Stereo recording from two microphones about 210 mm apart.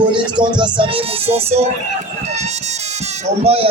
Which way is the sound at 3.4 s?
25° right (ahead or behind).